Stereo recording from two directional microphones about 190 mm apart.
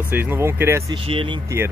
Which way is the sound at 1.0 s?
30° right (ahead or behind).